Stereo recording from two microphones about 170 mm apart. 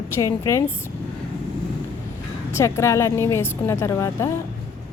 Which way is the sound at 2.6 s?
15° left (ahead or behind).